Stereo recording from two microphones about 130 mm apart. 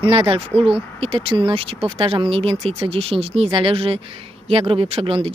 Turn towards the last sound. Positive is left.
turn(degrees=-45)  # may be behind; listen again after turning